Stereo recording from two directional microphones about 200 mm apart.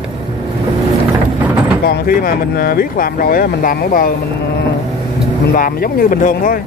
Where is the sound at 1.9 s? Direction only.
45° left (ahead or behind).